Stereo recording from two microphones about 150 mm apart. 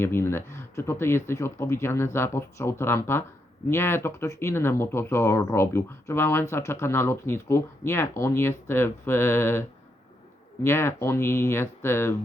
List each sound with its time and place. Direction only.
0.0 s speech: 15° left (ahead or behind)